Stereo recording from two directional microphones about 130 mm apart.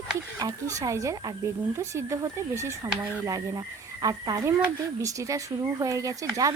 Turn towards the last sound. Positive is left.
turn(degrees=-25)  # may be behind; listen again after turning